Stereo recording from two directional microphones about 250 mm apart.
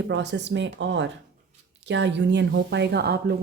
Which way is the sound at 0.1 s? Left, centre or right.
Right.